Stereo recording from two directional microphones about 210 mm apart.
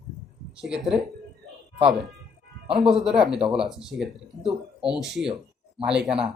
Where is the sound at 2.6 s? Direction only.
Centre (ahead or behind).